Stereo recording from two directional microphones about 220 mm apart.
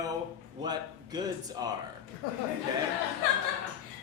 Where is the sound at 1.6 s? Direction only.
20° right (ahead or behind).